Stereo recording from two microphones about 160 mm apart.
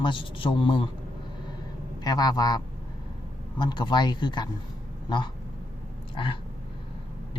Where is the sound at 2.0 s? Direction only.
25° left (ahead or behind).